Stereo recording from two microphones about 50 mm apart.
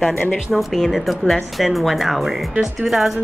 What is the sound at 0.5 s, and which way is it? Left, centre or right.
A woman's voice, centre.